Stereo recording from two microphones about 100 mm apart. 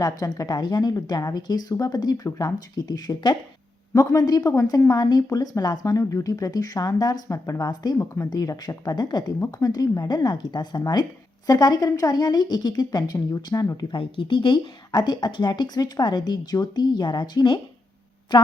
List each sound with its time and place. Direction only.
0.0 s a woman's voice: 40° left (ahead or behind)
7.9 s speech: 25° left (ahead or behind)
8.3 s a woman's voice: 40° left (ahead or behind)
13.9 s a woman's voice: 55° left (ahead or behind)